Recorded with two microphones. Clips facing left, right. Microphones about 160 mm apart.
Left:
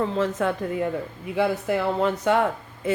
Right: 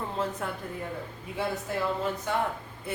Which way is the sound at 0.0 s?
90° left.